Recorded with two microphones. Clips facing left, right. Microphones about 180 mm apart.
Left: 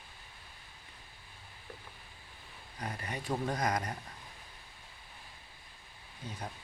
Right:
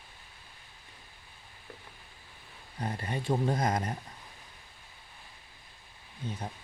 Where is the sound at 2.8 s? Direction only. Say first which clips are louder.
Right 5 dB; 30° right (ahead or behind).